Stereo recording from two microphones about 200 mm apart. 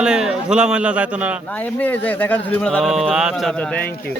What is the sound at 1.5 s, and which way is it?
Speech, 10° left (ahead or behind).